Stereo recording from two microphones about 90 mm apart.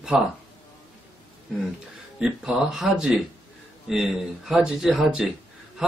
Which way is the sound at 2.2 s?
5° right (ahead or behind).